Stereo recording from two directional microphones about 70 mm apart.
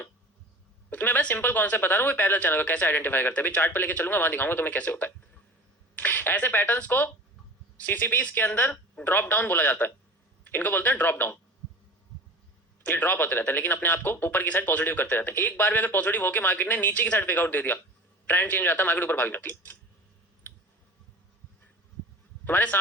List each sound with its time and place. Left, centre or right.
0.9 s a man's voice: left
12.8 s a man's voice: left
22.4 s a man's voice: left